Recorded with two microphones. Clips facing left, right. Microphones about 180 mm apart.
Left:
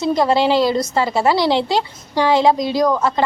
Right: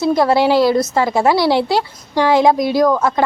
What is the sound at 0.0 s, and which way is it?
A woman's voice, 10° right (ahead or behind).